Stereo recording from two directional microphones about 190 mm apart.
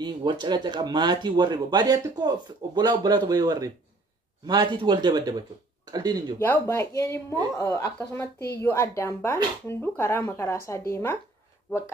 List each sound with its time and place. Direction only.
0.0 s speech: 25° right (ahead or behind)
6.4 s speech: 10° left (ahead or behind)